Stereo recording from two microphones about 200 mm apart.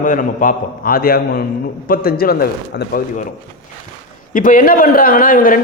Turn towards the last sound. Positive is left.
turn(degrees=45)  # may be behind; listen again after turning